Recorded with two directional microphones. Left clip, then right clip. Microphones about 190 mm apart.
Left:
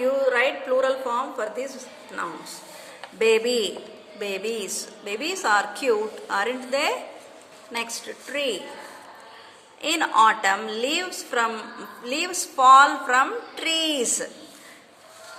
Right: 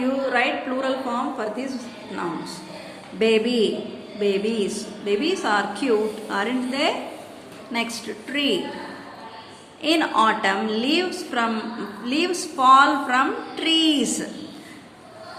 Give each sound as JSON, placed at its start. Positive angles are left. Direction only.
{"t": 0.3, "sound": "a woman's voice", "side_deg": 40}
{"t": 9.8, "sound": "a woman's voice", "side_deg": 40}